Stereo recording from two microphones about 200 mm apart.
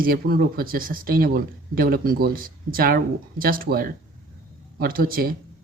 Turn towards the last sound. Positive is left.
turn(degrees=-45)  # may be behind; listen again after turning